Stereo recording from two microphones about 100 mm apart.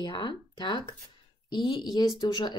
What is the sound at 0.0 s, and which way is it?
Speech, 50° left (ahead or behind).